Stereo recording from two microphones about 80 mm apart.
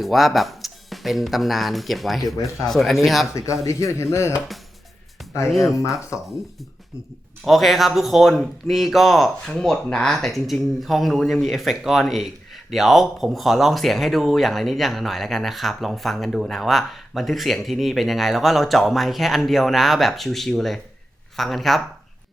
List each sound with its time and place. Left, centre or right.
0.0 s speech: centre
3.3 s speech: left
5.5 s speech: centre
6.1 s speech: left
7.4 s speech: centre